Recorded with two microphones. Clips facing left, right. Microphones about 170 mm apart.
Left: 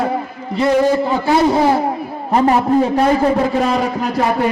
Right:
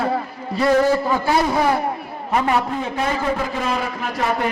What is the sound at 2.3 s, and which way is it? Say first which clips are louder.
A man's voice: left 7 dB; 35° left (ahead or behind).